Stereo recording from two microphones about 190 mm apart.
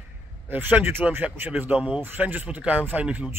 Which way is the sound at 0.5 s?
10° right (ahead or behind).